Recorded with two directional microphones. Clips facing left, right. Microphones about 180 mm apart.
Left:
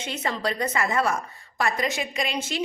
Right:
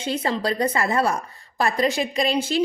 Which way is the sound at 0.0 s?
30° right (ahead or behind).